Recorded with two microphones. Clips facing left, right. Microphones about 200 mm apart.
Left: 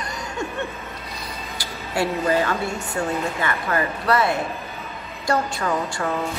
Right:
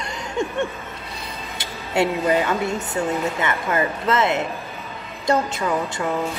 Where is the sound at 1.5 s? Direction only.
20° right (ahead or behind).